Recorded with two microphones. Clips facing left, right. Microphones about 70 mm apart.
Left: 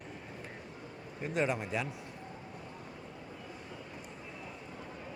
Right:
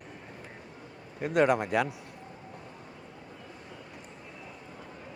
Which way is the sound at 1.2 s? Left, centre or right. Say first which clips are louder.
Right 8 dB; right.